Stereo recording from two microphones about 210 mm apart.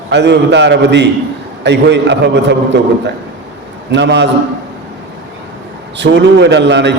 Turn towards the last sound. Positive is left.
turn(degrees=-55)  # may be behind; listen again after turning